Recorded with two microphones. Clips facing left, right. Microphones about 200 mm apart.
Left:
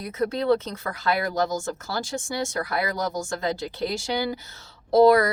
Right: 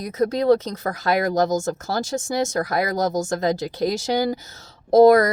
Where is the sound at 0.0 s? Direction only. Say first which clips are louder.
Right 5 dB; 40° right (ahead or behind).